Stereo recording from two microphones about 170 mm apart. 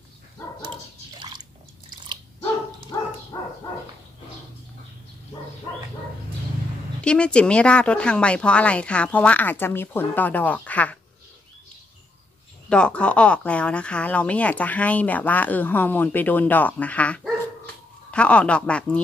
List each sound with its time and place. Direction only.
1.2 s drip: 25° right (ahead or behind)
2.9 s dog: 20° left (ahead or behind)
7.0 s speech: 5° left (ahead or behind)
12.6 s speech: 5° left (ahead or behind)